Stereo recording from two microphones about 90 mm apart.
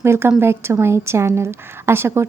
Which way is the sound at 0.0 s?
30° right (ahead or behind).